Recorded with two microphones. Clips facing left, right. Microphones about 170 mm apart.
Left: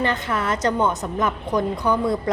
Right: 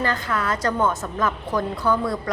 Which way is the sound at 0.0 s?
20° left (ahead or behind).